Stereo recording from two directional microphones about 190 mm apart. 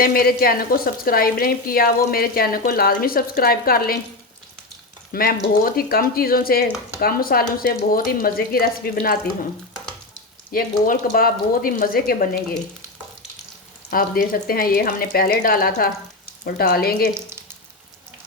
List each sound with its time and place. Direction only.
0.0 s speech: 50° left (ahead or behind)
5.1 s speech: 50° left (ahead or behind)
10.5 s speech: 50° left (ahead or behind)
13.9 s speech: 50° left (ahead or behind)